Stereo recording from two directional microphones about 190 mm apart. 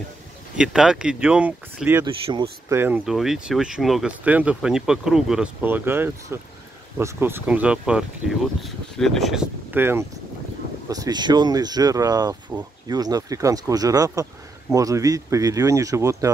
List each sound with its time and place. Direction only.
0.6 s speech: 5° right (ahead or behind)
2.2 s speech: 30° right (ahead or behind)
2.7 s speech: 10° right (ahead or behind)